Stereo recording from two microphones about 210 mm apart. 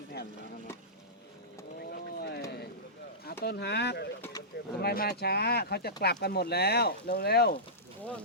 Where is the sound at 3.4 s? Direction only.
50° left (ahead or behind).